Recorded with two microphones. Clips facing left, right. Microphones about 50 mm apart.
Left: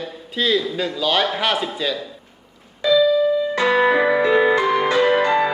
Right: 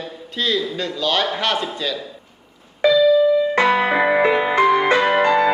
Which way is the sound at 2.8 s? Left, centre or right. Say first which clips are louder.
Right 2 dB; right.